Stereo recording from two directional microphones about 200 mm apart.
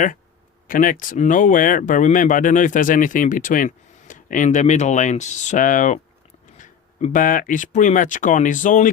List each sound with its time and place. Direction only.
0.7 s speech: 45° left (ahead or behind)